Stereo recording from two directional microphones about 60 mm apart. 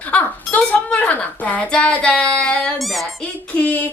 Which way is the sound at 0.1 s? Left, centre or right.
Left.